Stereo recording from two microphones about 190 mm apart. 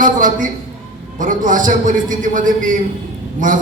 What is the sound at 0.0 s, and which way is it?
A man's voice, 45° right (ahead or behind).